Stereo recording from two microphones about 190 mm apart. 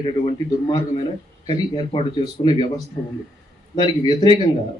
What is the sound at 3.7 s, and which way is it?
Speech, 25° left (ahead or behind).